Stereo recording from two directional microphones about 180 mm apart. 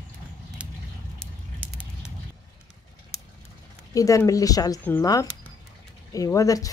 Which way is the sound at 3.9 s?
20° left (ahead or behind).